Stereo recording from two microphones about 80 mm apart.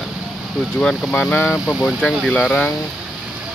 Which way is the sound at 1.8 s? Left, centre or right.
Centre.